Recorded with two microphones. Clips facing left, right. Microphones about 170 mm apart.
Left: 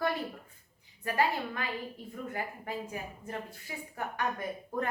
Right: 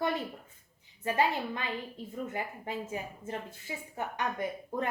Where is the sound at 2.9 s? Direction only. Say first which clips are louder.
Right 2 dB; 25° right (ahead or behind).